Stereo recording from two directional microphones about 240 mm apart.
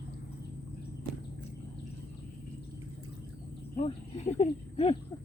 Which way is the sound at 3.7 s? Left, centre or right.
Left.